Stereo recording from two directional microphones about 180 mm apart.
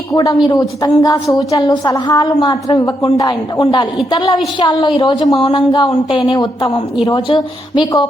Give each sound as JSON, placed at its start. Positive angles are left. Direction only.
{"t": 0.1, "sound": "a woman's voice", "side_deg": 20}